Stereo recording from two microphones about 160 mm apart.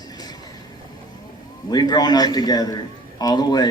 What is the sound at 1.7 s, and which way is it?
A man's voice, 25° left (ahead or behind).